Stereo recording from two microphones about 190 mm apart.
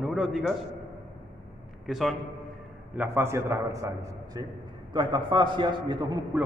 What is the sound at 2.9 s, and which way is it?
A man's voice, 10° right (ahead or behind).